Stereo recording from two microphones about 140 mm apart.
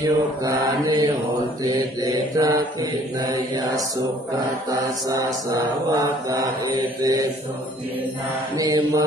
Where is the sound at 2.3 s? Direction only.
25° right (ahead or behind).